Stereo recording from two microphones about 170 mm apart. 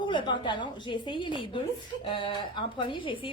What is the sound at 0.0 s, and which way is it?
A woman's voice, 25° left (ahead or behind).